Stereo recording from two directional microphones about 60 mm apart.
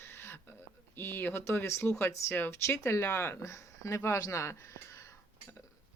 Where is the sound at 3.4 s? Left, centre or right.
Left.